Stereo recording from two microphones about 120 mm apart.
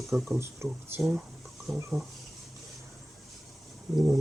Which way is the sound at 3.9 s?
Centre (ahead or behind).